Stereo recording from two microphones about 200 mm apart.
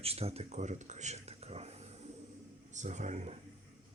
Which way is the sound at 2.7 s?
35° right (ahead or behind).